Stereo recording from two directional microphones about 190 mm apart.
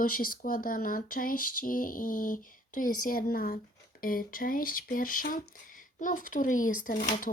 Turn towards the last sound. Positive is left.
turn(degrees=50)  # may be behind; listen again after turning